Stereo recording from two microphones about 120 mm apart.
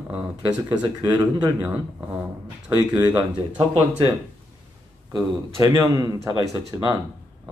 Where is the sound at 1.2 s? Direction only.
30° right (ahead or behind).